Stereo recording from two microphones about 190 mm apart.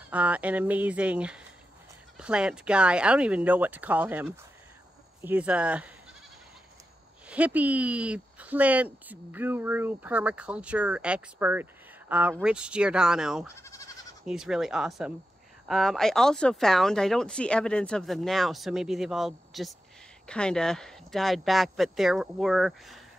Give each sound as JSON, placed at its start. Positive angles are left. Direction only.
{"t": 0.1, "sound": "speech", "side_deg": -5}
{"t": 7.2, "sound": "speech", "side_deg": -5}
{"t": 13.6, "sound": "goat", "side_deg": 15}
{"t": 14.2, "sound": "speech", "side_deg": -5}